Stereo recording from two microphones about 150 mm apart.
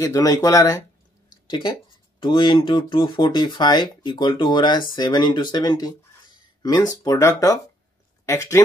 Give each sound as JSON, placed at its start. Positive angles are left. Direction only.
{"t": 0.0, "sound": "speech", "side_deg": 25}